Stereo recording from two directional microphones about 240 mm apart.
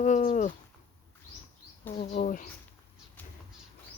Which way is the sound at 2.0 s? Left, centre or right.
Left.